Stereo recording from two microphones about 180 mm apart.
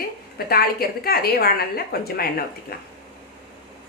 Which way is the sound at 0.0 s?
55° left (ahead or behind).